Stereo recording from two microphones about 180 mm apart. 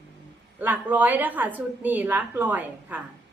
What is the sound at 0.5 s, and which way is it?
A woman's voice, 10° right (ahead or behind).